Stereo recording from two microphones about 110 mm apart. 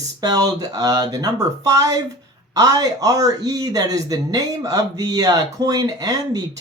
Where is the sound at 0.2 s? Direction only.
35° right (ahead or behind).